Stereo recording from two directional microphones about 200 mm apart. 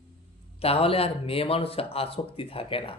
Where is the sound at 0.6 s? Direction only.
30° left (ahead or behind).